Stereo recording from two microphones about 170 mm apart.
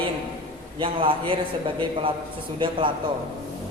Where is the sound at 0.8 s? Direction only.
30° right (ahead or behind).